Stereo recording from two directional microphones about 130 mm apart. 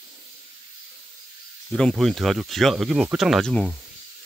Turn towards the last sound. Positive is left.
turn(degrees=5)  # may be behind; listen again after turning